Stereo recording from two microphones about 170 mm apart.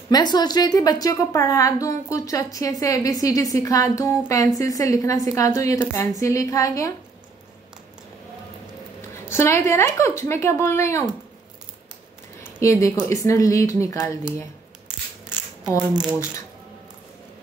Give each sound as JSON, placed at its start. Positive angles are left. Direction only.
{"t": 0.1, "sound": "a woman's voice", "side_deg": 25}
{"t": 9.1, "sound": "a woman's voice", "side_deg": 15}
{"t": 12.5, "sound": "a woman's voice", "side_deg": 20}
{"t": 16.0, "sound": "speech", "side_deg": -5}